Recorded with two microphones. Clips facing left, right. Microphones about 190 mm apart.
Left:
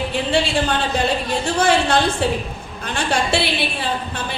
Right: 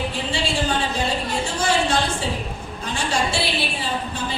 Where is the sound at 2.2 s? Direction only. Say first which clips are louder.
Left 5 dB; 65° left (ahead or behind).